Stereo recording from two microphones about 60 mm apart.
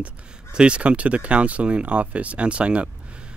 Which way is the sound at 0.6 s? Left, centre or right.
Centre.